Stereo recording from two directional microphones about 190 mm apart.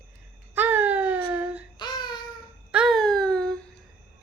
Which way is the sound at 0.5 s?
10° right (ahead or behind).